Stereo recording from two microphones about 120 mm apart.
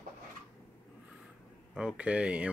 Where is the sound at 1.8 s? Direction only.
10° right (ahead or behind).